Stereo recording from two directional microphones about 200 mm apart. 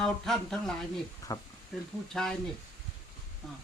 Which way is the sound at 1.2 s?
15° left (ahead or behind).